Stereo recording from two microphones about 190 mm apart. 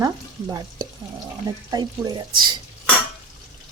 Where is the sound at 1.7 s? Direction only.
20° right (ahead or behind).